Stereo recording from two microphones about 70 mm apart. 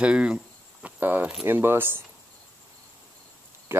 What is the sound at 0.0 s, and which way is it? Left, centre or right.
Speech, centre.